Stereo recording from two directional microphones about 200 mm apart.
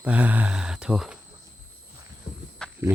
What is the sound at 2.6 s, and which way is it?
Wild animals, 5° left (ahead or behind).